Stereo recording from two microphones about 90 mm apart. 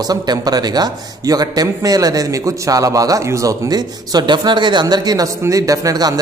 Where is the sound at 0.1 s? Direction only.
45° right (ahead or behind).